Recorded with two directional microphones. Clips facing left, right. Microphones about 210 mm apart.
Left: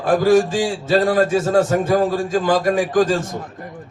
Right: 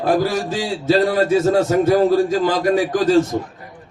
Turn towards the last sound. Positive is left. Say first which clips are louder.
# even
turn(degrees=50)  # may be behind; listen again after turning